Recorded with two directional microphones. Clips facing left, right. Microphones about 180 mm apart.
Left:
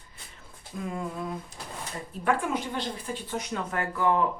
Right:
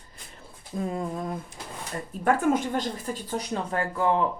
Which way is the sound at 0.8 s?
35° right (ahead or behind).